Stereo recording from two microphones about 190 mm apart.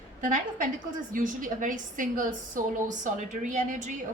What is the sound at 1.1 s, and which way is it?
A woman's voice, 45° right (ahead or behind).